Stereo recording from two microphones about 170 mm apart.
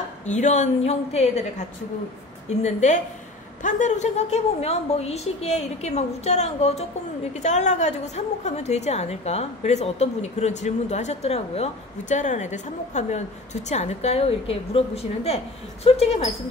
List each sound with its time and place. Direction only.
0.3 s a woman's voice: 45° left (ahead or behind)
2.6 s a woman's voice: 40° left (ahead or behind)